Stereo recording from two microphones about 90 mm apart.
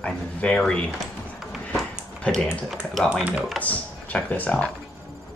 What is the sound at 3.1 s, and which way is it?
Speech, 15° right (ahead or behind).